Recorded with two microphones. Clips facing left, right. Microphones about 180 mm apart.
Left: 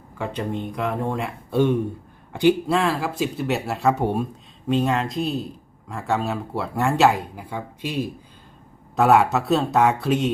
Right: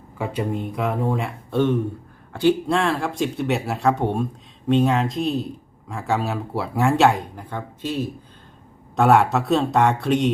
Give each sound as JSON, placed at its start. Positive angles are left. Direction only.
{"t": 0.2, "sound": "speech", "side_deg": -5}
{"t": 2.6, "sound": "speech", "side_deg": 5}
{"t": 9.0, "sound": "speech", "side_deg": 0}